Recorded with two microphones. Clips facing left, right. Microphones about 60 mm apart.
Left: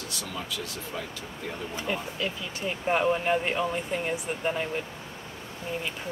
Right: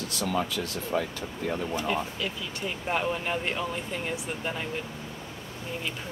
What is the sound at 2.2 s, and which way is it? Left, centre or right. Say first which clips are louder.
Speech: left 1 dB; centre.